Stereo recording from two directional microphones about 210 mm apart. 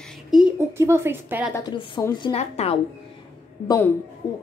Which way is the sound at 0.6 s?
10° right (ahead or behind).